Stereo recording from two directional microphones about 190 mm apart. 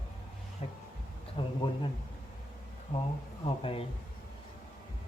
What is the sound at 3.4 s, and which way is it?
Speech, 30° left (ahead or behind).